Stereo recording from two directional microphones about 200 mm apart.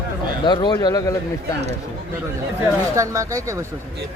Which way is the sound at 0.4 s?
20° left (ahead or behind).